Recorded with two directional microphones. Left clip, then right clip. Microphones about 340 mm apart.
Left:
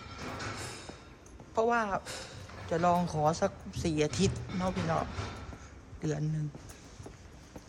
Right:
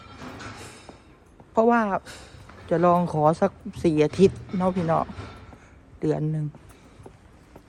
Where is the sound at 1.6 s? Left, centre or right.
Centre.